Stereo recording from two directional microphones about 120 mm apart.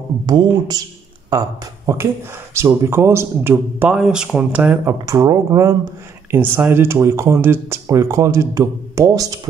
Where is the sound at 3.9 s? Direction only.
5° right (ahead or behind).